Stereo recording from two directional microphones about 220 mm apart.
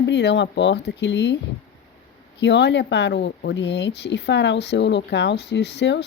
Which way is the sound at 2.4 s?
50° left (ahead or behind).